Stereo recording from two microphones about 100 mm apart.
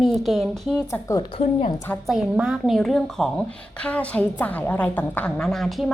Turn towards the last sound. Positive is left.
turn(degrees=0)  # may be behind; listen again after turning